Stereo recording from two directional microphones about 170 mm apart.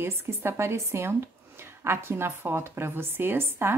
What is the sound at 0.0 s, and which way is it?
A woman's voice, 15° right (ahead or behind).